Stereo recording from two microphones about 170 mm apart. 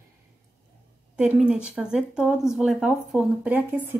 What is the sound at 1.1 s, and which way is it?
Speech, 5° right (ahead or behind).